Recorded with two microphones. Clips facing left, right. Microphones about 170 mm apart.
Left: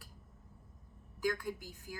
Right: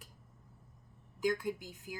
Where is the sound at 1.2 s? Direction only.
20° right (ahead or behind).